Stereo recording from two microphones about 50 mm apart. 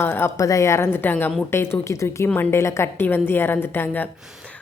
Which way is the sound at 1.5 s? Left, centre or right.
Left.